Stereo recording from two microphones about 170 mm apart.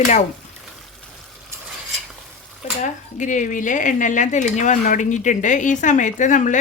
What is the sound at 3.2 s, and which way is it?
Speech, 45° left (ahead or behind).